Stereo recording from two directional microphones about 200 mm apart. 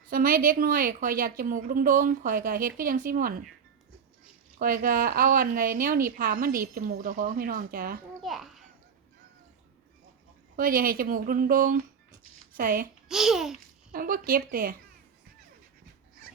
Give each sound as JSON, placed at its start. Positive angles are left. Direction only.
{"t": 0.1, "sound": "a woman's voice", "side_deg": -45}
{"t": 4.6, "sound": "a woman's voice", "side_deg": -45}
{"t": 8.2, "sound": "babbling", "side_deg": 0}
{"t": 10.6, "sound": "a woman's voice", "side_deg": -45}
{"t": 13.1, "sound": "a child's voice", "side_deg": 0}
{"t": 13.9, "sound": "a woman's voice", "side_deg": -45}